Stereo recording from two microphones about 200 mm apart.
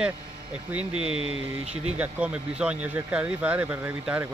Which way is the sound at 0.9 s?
90° right.